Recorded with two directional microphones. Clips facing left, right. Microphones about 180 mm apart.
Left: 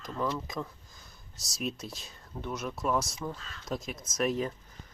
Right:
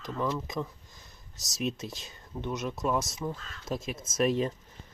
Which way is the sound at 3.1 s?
5° right (ahead or behind).